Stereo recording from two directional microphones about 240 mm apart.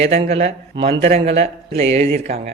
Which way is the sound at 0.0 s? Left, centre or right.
Right.